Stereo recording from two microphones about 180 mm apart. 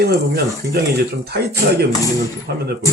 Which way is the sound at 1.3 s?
65° right (ahead or behind).